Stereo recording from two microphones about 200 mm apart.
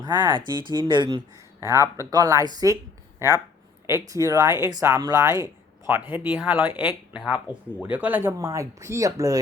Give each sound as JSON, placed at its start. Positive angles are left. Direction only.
{"t": 0.0, "sound": "speech", "side_deg": -20}
{"t": 3.8, "sound": "speech", "side_deg": -15}